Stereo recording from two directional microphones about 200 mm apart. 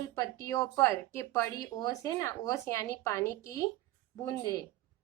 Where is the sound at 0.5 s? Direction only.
15° left (ahead or behind).